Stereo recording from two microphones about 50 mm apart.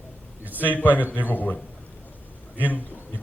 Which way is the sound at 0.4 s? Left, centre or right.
Right.